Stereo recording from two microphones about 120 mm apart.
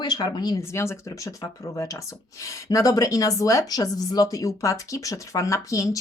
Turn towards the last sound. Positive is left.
turn(degrees=25)  # may be behind; listen again after turning